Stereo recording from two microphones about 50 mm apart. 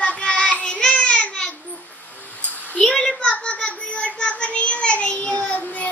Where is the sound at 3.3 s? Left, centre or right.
Left.